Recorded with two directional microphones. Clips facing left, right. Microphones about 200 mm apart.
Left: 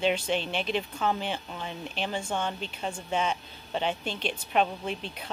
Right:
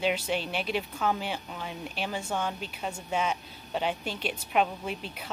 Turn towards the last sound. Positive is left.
turn(degrees=-5)  # may be behind; listen again after turning